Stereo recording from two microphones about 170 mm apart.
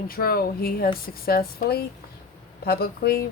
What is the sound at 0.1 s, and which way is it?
Speech, 60° left (ahead or behind).